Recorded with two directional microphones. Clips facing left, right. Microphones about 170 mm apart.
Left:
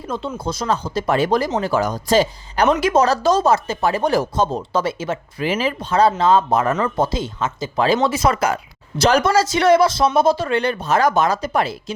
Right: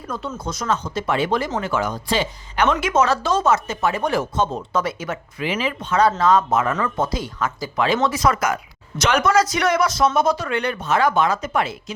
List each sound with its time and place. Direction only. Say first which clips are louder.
0.3 s speech: left 1 dB; 30° left (ahead or behind)